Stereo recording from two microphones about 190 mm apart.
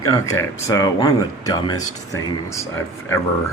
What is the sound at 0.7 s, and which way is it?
Speech, 20° left (ahead or behind).